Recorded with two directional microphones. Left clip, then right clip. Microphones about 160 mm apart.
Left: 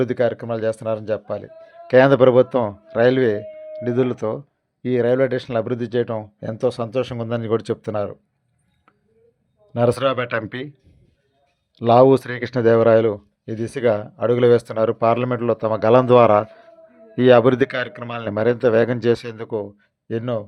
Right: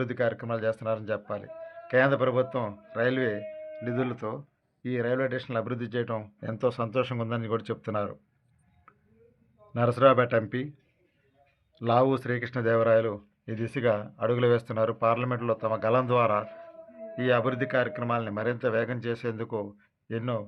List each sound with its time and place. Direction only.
0.0 s speech: 45° left (ahead or behind)
7.3 s speech: 50° left (ahead or behind)
9.7 s speech: 55° left (ahead or behind)
11.7 s speech: 50° left (ahead or behind)
13.4 s speech: 40° left (ahead or behind); by 19.5 s 60° left (ahead or behind)
19.5 s speech: 40° left (ahead or behind)